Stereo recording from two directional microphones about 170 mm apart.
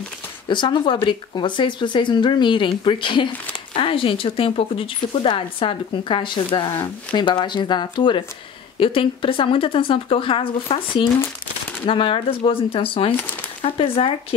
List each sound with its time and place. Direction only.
0.5 s speech: 25° left (ahead or behind)
13.1 s speech: 10° left (ahead or behind)
13.6 s speech: 30° left (ahead or behind)